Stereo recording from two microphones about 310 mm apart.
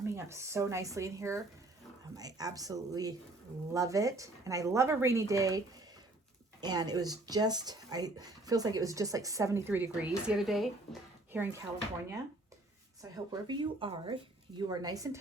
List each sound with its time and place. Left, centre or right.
0.0 s speech: centre
13.0 s speech: centre